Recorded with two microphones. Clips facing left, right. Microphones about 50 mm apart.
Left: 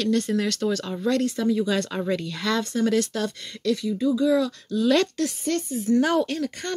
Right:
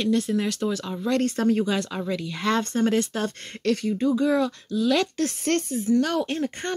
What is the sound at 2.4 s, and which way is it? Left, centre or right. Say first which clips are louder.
Speech: right 2 dB; right.